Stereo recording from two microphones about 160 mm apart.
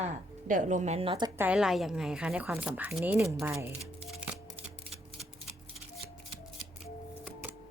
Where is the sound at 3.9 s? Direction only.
5° right (ahead or behind).